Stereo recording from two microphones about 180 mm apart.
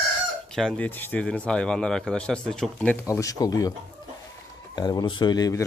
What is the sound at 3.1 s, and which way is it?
Speech, 20° left (ahead or behind).